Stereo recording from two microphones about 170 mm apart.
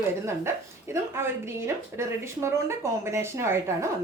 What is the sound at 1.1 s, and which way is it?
A woman's voice, 15° right (ahead or behind).